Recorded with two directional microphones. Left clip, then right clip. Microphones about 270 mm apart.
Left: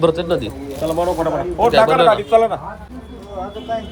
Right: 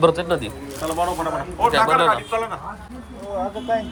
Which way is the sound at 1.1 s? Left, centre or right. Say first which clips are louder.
Left 6 dB; left.